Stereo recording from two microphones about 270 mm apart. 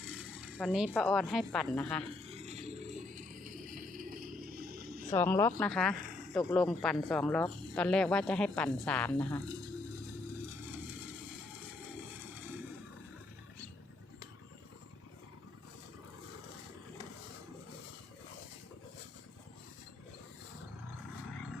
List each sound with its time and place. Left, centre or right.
0.0 s speech: centre
2.0 s a sound: right
5.1 s speech: centre